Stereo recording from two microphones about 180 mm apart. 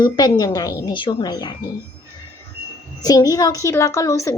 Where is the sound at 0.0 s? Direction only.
20° left (ahead or behind).